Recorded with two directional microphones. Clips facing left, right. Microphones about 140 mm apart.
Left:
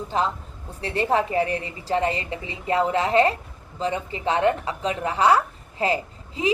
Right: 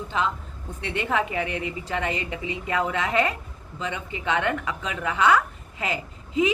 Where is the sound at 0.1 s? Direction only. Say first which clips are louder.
Left 2 dB; 40° left (ahead or behind).